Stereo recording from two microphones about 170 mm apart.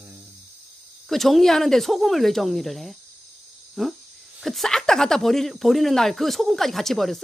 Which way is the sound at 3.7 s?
Centre (ahead or behind).